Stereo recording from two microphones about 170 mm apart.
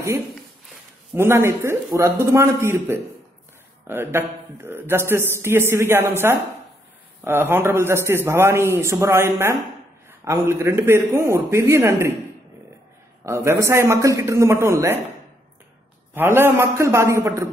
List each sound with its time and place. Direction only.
1.1 s a man's voice: 15° right (ahead or behind)
13.2 s a man's voice: 15° right (ahead or behind)
16.2 s a man's voice: 15° right (ahead or behind)